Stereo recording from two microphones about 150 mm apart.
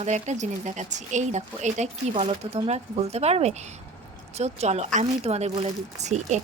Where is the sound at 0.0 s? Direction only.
50° right (ahead or behind).